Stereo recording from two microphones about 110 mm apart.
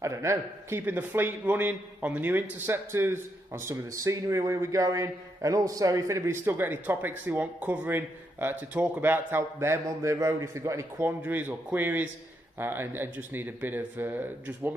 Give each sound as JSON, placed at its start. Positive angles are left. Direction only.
{"t": 0.0, "sound": "a man's voice", "side_deg": -25}